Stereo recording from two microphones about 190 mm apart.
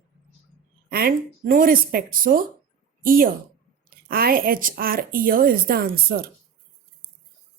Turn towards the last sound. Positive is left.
turn(degrees=-50)  # may be behind; listen again after turning